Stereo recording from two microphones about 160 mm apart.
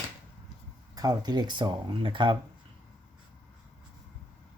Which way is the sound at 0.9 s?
25° right (ahead or behind).